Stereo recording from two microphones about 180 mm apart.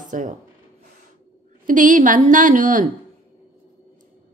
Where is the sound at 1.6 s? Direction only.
45° right (ahead or behind).